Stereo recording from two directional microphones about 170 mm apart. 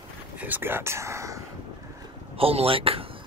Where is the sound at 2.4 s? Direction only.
35° right (ahead or behind).